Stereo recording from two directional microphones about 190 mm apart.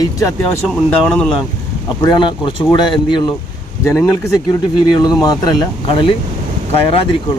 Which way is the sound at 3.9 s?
15° left (ahead or behind).